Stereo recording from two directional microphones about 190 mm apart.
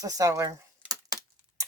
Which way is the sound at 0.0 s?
20° right (ahead or behind).